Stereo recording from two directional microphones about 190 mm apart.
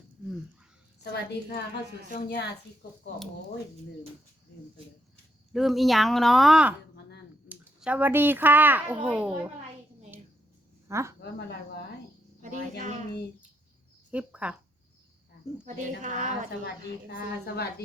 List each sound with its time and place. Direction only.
1.1 s a woman's voice: 60° left (ahead or behind)
5.5 s speech: centre (ahead or behind)
10.8 s speech: 15° right (ahead or behind)
11.2 s a woman's voice: 60° left (ahead or behind)
12.4 s speech: 40° right (ahead or behind)
14.1 s speech: 5° right (ahead or behind)
15.6 s speech: 40° right (ahead or behind)
17.1 s a woman's voice: 60° left (ahead or behind)